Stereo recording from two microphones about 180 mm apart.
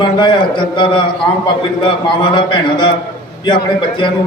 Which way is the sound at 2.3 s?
25° left (ahead or behind).